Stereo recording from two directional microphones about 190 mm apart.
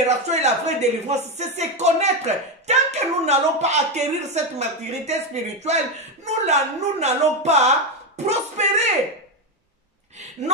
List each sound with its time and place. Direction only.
0.0 s speech: 35° right (ahead or behind)